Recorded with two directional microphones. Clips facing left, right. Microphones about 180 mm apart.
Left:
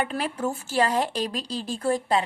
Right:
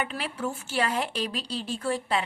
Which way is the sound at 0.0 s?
45° left (ahead or behind).